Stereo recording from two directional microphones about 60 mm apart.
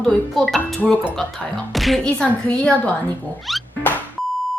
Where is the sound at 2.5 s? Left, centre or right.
Centre.